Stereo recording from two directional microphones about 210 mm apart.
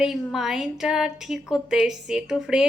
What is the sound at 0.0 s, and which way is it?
A woman's voice, centre (ahead or behind).